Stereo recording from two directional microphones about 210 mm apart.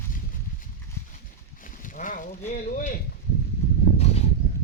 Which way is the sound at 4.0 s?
30° left (ahead or behind).